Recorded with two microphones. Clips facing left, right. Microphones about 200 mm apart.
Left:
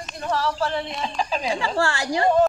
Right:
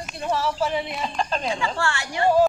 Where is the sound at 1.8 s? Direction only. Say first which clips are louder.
Left 3 dB; 35° left (ahead or behind).